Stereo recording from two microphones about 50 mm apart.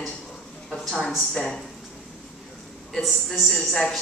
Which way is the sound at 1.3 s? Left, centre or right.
Centre.